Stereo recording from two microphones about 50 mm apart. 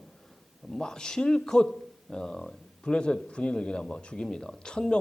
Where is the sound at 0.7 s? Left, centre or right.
Centre.